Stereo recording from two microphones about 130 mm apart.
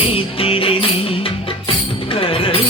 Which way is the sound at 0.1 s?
45° left (ahead or behind).